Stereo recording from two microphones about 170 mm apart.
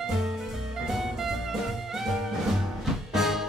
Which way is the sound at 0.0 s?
Centre (ahead or behind).